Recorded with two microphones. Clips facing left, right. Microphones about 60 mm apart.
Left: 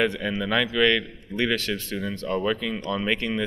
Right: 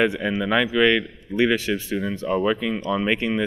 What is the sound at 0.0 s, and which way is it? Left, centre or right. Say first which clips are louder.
A man's voice: right 3 dB; centre.